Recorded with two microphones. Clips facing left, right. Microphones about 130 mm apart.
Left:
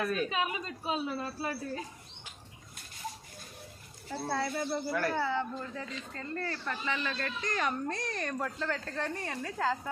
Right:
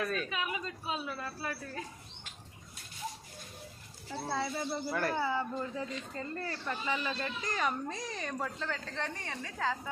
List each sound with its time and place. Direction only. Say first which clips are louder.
0.3 s a woman's voice: left 3 dB; 30° left (ahead or behind)
4.3 s speech: left 2 dB; centre (ahead or behind)
7.4 s speech: left 2 dB; 5° right (ahead or behind)